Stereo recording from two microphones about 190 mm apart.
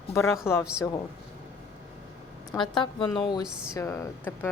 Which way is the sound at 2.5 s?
25° left (ahead or behind).